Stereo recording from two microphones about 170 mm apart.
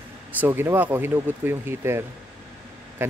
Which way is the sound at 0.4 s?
15° right (ahead or behind).